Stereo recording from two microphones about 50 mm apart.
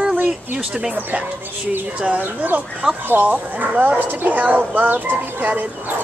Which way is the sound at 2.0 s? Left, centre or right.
Right.